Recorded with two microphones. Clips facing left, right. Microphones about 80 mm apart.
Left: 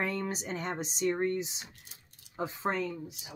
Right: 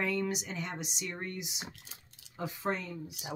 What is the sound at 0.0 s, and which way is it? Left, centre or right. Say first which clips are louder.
Speech: right 1 dB; left.